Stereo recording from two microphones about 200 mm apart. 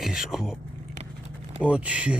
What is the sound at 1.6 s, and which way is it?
Speech, 5° right (ahead or behind).